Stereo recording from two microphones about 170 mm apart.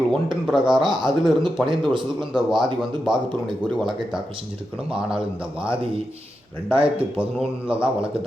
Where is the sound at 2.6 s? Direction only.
25° right (ahead or behind).